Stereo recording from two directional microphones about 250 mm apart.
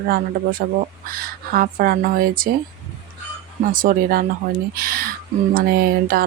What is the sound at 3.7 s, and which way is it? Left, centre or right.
Speech, right.